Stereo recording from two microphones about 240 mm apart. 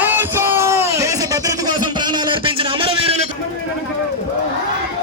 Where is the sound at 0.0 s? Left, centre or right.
Centre.